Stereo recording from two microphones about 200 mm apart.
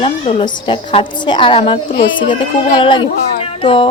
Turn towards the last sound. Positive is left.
turn(degrees=25)  # may be behind; listen again after turning